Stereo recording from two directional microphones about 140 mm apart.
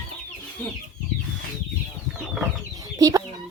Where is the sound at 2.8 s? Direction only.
25° right (ahead or behind).